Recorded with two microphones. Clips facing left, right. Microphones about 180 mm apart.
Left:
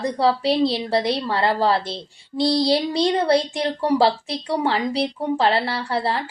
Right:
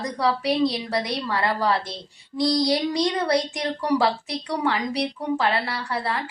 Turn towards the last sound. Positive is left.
turn(degrees=30)  # may be behind; listen again after turning